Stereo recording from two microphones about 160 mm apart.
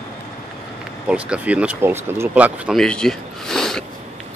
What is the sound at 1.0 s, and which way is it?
Speech, 5° right (ahead or behind).